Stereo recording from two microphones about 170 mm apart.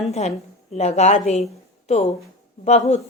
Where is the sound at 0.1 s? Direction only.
40° left (ahead or behind).